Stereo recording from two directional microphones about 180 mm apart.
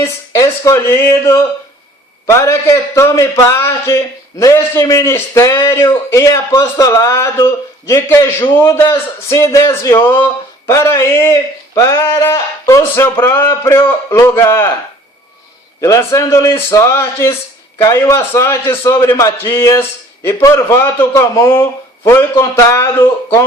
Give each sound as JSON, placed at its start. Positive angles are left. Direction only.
{"t": 0.0, "sound": "a man's voice", "side_deg": 15}
{"t": 15.8, "sound": "a man's voice", "side_deg": 15}